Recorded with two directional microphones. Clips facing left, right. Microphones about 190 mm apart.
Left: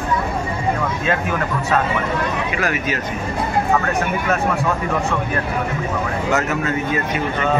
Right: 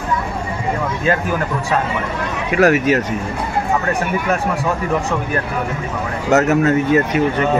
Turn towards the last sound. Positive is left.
turn(degrees=-40)  # may be behind; listen again after turning